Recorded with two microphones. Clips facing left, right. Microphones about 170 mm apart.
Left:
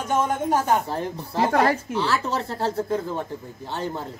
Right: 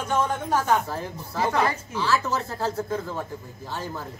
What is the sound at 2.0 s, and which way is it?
Speech, 30° left (ahead or behind).